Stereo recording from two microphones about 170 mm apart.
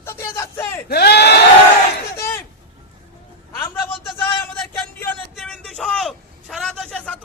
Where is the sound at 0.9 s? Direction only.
70° left (ahead or behind).